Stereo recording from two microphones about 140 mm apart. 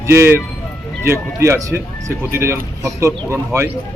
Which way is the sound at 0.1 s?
20° right (ahead or behind).